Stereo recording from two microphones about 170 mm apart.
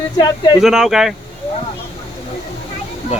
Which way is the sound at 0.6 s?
Centre (ahead or behind).